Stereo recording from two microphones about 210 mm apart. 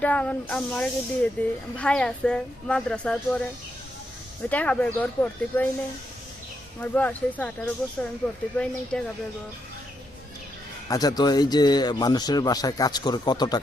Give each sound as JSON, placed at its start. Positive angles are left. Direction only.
{"t": 0.0, "sound": "speech", "side_deg": 5}
{"t": 4.4, "sound": "speech", "side_deg": 5}
{"t": 6.7, "sound": "speech", "side_deg": 5}
{"t": 10.8, "sound": "a man's voice", "side_deg": 20}